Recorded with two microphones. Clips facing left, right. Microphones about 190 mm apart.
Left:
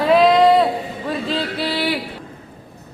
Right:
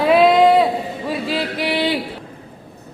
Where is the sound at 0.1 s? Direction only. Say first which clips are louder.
Even; 5° right (ahead or behind).